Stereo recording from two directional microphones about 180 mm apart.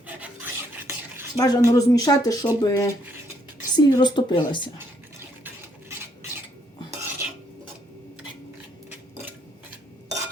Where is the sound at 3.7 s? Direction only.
25° left (ahead or behind).